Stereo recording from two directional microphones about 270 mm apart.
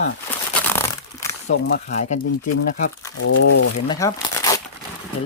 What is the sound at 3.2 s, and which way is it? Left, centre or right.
Speech, left.